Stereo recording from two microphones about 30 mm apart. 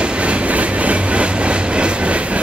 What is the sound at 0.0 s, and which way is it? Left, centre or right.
Train, right.